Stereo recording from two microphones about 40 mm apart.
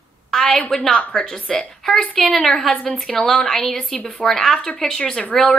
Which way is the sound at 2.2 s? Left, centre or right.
Centre.